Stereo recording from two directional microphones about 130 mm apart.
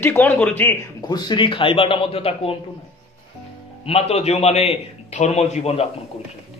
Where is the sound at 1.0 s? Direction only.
30° left (ahead or behind); by 2.5 s 50° left (ahead or behind).